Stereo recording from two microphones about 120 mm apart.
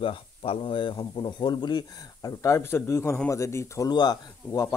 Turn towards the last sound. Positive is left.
turn(degrees=30)  # may be behind; listen again after turning